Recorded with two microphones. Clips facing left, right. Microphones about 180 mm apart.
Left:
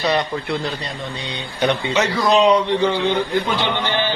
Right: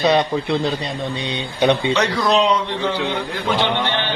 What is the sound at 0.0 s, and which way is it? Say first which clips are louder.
Speech: right 4 dB; 20° right (ahead or behind).